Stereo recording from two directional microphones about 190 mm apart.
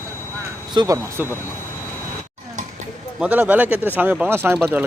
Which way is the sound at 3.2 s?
10° right (ahead or behind).